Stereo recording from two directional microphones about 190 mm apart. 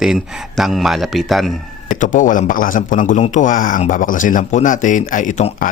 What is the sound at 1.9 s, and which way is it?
A man's voice, 45° left (ahead or behind).